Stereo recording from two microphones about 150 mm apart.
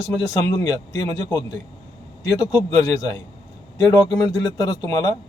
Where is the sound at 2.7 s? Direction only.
25° left (ahead or behind).